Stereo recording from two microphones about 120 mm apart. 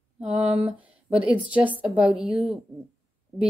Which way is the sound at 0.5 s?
60° right (ahead or behind).